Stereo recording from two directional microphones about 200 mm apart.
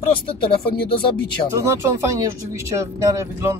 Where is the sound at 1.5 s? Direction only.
15° right (ahead or behind).